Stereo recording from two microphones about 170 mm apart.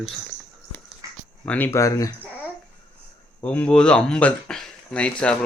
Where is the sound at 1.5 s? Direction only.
10° left (ahead or behind).